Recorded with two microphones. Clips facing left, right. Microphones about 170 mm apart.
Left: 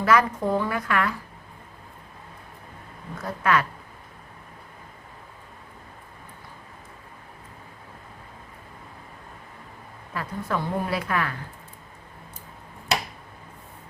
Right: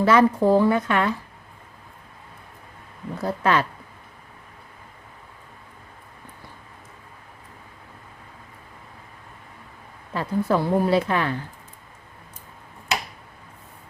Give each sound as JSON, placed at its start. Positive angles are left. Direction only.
{"t": 0.0, "sound": "a woman's voice", "side_deg": -30}
{"t": 3.2, "sound": "speech", "side_deg": -30}
{"t": 10.2, "sound": "a woman's voice", "side_deg": -30}